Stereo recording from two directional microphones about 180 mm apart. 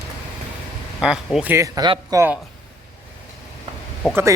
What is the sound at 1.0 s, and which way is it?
Speech, 5° right (ahead or behind).